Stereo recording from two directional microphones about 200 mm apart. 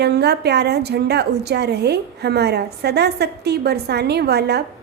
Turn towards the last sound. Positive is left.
turn(degrees=-55)  # may be behind; listen again after turning